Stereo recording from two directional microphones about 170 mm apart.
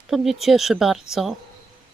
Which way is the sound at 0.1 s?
Centre (ahead or behind).